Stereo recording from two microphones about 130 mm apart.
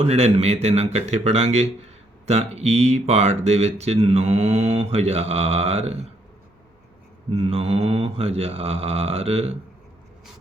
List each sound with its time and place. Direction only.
0.0 s speech: 50° right (ahead or behind)
7.3 s mantra: 45° right (ahead or behind)